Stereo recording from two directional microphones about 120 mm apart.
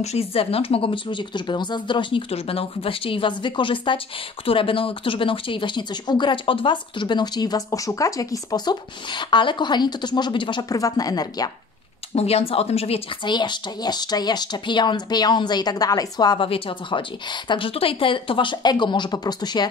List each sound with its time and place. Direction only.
0.0 s speech: 60° left (ahead or behind); by 10.6 s 40° left (ahead or behind)
10.7 s speech: 30° left (ahead or behind)
12.2 s speech: 60° left (ahead or behind)
13.2 s speech: 40° left (ahead or behind)
16.3 s speech: 50° left (ahead or behind)